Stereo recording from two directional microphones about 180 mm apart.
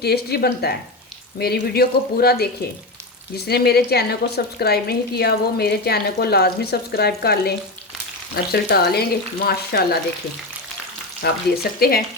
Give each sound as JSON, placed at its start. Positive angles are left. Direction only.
{"t": 0.0, "sound": "speech", "side_deg": 60}
{"t": 8.5, "sound": "speech", "side_deg": 60}
{"t": 11.2, "sound": "speech", "side_deg": 60}